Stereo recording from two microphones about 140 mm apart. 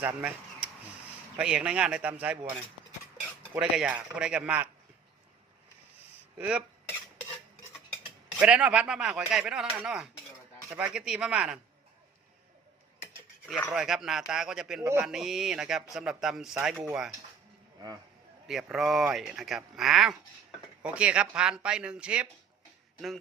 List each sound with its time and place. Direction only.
0.0 s speech: 10° right (ahead or behind)
3.5 s speech: 5° right (ahead or behind)
6.3 s speech: 10° right (ahead or behind)
8.4 s speech: 5° right (ahead or behind)
13.7 s speech: centre (ahead or behind)
17.7 s speech: 25° right (ahead or behind)
18.4 s speech: 5° right (ahead or behind)